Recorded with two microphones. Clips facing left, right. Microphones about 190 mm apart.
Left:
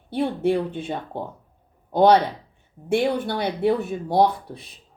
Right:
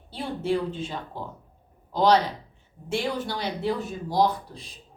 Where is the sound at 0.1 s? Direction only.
60° left (ahead or behind).